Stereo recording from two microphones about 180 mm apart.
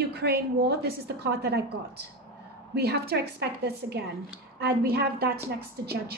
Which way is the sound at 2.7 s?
65° right (ahead or behind).